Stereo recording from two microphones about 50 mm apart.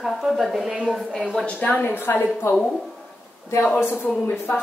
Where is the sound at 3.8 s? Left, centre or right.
Left.